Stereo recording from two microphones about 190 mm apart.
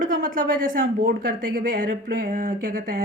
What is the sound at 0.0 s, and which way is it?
Speech, 45° right (ahead or behind).